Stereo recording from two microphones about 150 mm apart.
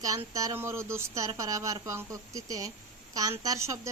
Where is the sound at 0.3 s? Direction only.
20° right (ahead or behind).